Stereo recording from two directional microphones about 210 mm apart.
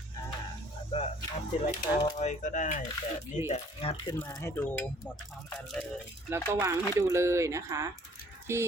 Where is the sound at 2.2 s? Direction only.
35° left (ahead or behind).